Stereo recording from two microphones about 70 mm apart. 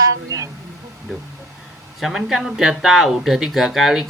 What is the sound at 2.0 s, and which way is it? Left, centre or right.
Speech, centre.